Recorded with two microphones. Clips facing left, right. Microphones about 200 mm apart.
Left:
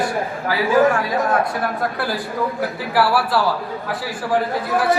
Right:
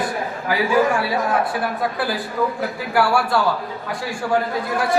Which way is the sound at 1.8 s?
Centre (ahead or behind).